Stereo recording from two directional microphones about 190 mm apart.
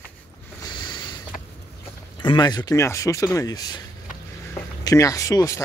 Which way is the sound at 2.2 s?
25° left (ahead or behind).